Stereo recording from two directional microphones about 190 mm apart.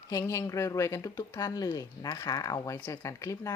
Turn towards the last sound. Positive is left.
turn(degrees=15)  # may be behind; listen again after turning